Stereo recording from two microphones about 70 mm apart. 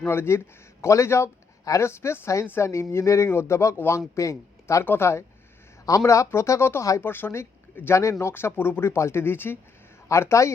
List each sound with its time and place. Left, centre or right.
0.0 s speech: left
10.1 s speech: left